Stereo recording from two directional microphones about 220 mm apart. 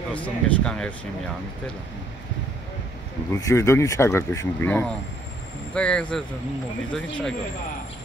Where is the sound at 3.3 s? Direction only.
15° left (ahead or behind).